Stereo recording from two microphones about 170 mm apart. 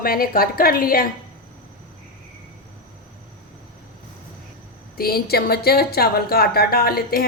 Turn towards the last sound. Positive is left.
turn(degrees=60)  # may be behind; listen again after turning